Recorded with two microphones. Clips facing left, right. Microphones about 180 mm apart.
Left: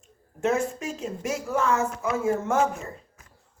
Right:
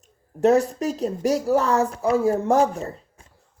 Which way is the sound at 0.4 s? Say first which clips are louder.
Right 7 dB; 40° right (ahead or behind).